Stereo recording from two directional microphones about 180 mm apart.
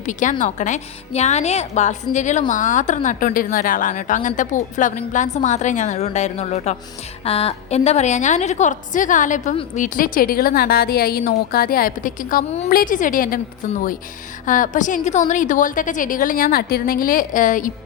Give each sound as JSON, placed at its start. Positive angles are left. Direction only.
{"t": 0.0, "sound": "a woman's voice", "side_deg": 45}